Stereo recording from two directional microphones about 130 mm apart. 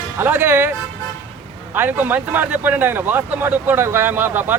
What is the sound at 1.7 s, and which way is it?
Speech, 15° right (ahead or behind).